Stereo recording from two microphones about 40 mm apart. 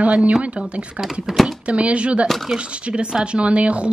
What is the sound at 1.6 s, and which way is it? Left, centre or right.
A woman's voice, right.